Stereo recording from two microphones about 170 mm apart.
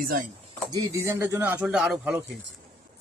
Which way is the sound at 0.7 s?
15° right (ahead or behind).